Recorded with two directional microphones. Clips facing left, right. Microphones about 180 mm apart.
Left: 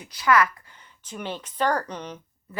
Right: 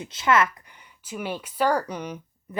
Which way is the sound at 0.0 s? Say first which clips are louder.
Even; 25° right (ahead or behind).